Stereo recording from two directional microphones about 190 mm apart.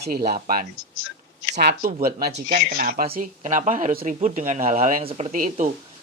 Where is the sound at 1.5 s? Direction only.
60° right (ahead or behind).